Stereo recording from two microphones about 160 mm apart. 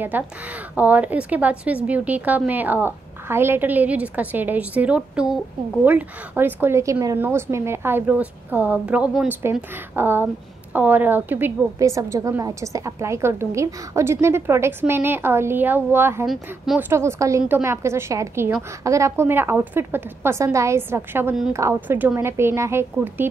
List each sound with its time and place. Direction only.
0.1 s a woman's voice: 10° right (ahead or behind)
16.3 s speech: centre (ahead or behind)
16.9 s a woman's voice: 20° right (ahead or behind)